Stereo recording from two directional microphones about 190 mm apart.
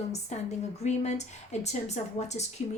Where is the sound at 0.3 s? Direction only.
35° left (ahead or behind).